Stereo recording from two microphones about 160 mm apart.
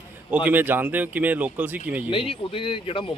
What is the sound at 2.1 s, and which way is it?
Speech, 35° left (ahead or behind).